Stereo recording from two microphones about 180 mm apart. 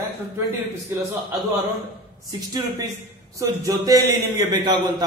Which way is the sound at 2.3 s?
20° right (ahead or behind).